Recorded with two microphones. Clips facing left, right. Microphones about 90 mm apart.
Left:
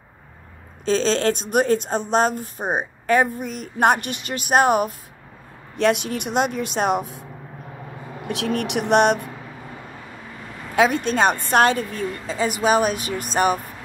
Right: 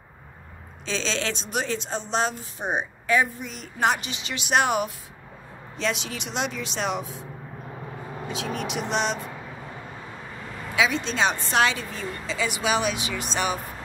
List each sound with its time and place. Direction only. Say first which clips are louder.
0.8 s speech: left 9 dB; 45° left (ahead or behind)
5.8 s speech: left 9 dB; 55° left (ahead or behind)
8.3 s speech: left 7 dB; 65° left (ahead or behind)
10.8 s speech: left 6 dB; 55° left (ahead or behind)